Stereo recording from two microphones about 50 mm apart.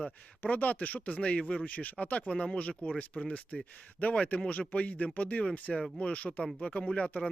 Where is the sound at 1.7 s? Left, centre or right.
Left.